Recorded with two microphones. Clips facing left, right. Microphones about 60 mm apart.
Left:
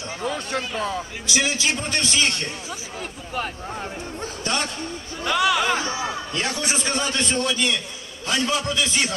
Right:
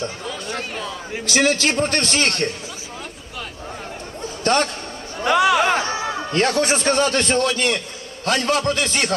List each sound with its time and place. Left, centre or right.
0.2 s a sound: left
1.2 s a man's voice: right
4.5 s a man's voice: right
5.2 s chatter: right
5.6 s a man's voice: right